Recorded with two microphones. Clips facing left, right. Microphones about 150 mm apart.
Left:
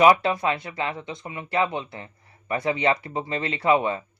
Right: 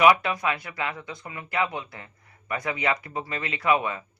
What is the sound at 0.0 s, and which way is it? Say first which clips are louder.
Speech: left 2 dB; 30° left (ahead or behind).